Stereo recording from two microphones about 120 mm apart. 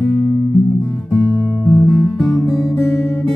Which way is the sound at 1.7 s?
10° left (ahead or behind).